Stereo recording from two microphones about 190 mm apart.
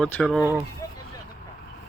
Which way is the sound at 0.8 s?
20° left (ahead or behind).